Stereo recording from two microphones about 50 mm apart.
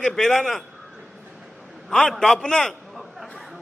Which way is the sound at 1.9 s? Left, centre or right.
Centre.